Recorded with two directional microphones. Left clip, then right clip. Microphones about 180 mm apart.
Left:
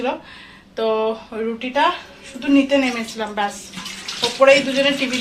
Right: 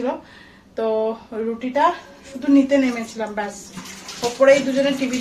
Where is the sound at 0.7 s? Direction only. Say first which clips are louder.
Left 1 dB; 5° right (ahead or behind).